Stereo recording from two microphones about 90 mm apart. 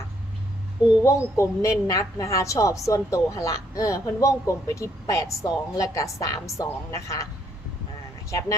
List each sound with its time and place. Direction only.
1.0 s a woman's voice: 35° left (ahead or behind)
8.3 s a woman's voice: 35° left (ahead or behind)